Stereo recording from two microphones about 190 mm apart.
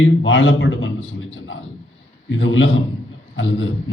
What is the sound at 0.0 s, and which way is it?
Speech, 90° left.